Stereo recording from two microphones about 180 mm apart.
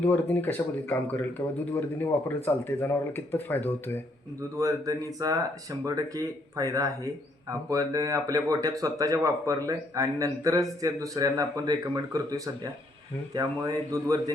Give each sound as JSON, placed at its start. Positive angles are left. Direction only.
{"t": 0.0, "sound": "speech", "side_deg": 10}
{"t": 4.4, "sound": "speech", "side_deg": -20}